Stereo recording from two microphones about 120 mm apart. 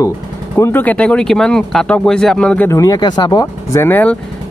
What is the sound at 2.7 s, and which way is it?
Speech, 30° left (ahead or behind).